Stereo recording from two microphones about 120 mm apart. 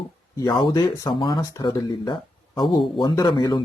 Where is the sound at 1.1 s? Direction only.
45° left (ahead or behind).